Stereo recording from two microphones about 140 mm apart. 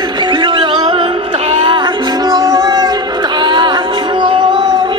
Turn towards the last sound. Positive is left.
turn(degrees=-35)  # may be behind; listen again after turning